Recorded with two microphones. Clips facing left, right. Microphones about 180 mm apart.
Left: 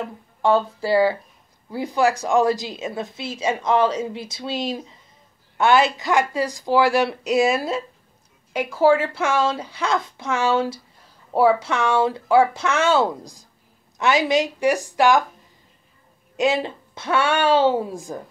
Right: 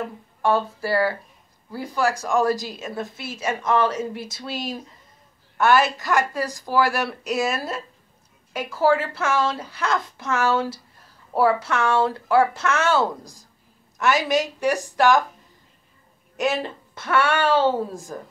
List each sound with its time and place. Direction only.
0.4 s speech: 20° left (ahead or behind)
16.3 s speech: 15° left (ahead or behind)